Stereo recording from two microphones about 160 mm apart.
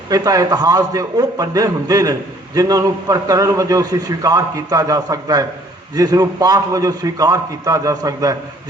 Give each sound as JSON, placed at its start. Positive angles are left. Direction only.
{"t": 0.1, "sound": "a man's voice", "side_deg": -25}